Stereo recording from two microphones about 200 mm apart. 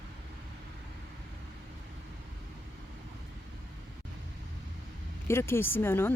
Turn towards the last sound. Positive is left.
turn(degrees=10)  # may be behind; listen again after turning